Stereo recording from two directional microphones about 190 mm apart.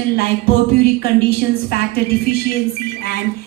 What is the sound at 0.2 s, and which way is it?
A woman's voice, 50° left (ahead or behind).